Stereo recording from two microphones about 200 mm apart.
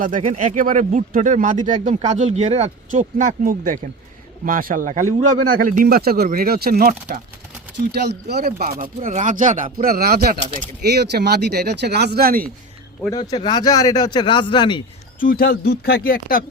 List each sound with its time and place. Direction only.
0.0 s speech: 40° right (ahead or behind)
9.0 s speech: 35° right (ahead or behind)
13.1 s speech: 20° left (ahead or behind)
15.2 s speech: 45° left (ahead or behind)